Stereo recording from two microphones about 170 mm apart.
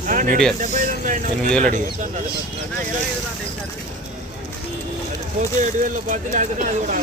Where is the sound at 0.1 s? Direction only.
50° right (ahead or behind).